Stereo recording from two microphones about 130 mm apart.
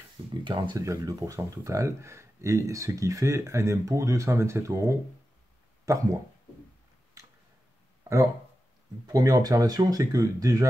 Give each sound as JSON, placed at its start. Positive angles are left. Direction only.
{"t": 0.3, "sound": "speech", "side_deg": -35}
{"t": 0.7, "sound": "speech", "side_deg": -25}
{"t": 9.0, "sound": "speech", "side_deg": -30}